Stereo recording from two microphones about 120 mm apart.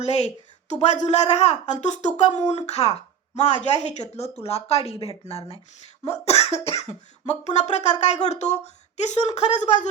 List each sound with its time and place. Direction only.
0.0 s speech: 65° left (ahead or behind)
2.5 s speech: 60° left (ahead or behind)
7.3 s speech: 70° left (ahead or behind)